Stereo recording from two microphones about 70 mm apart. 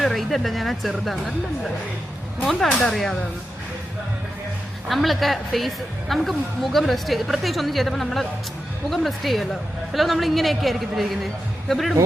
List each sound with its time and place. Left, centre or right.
0.0 s a woman's voice: centre
2.4 s a woman's voice: centre
4.9 s a woman's voice: centre